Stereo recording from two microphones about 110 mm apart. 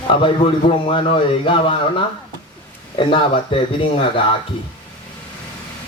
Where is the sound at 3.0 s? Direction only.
50° left (ahead or behind).